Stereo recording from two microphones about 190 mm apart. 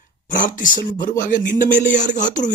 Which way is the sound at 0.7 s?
25° left (ahead or behind).